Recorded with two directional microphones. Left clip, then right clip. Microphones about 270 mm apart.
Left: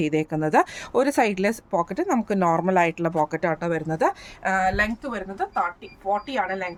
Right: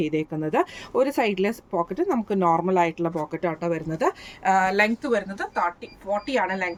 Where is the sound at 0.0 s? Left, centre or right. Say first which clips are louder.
Left 2 dB; left; by 6.7 s centre.